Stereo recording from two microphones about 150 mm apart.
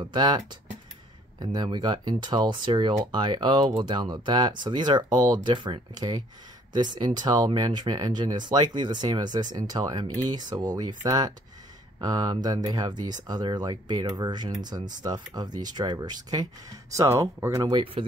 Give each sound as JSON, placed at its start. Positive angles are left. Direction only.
{"t": 0.0, "sound": "speech", "side_deg": -30}